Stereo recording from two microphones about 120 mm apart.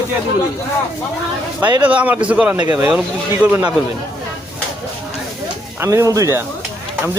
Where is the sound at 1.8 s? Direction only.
10° right (ahead or behind).